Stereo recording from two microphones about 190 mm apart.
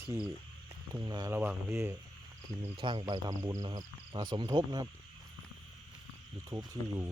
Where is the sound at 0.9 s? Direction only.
20° right (ahead or behind).